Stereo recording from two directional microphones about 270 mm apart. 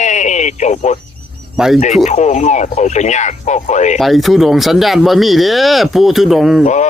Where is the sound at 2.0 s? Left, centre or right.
Left.